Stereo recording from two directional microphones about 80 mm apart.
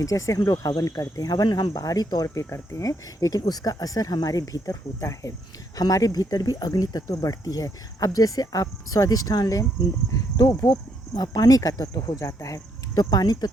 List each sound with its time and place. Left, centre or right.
0.0 s speech: left